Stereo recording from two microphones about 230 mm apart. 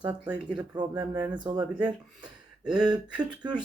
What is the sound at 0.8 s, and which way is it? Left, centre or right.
Speech, centre.